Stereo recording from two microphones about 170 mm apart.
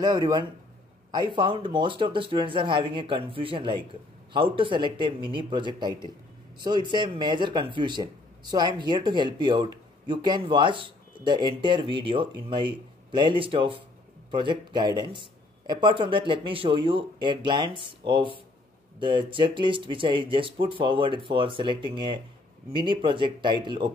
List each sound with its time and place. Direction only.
0.0 s speech: 25° right (ahead or behind)